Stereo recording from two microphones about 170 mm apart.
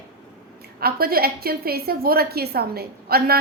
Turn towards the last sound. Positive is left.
turn(degrees=-65)  # may be behind; listen again after turning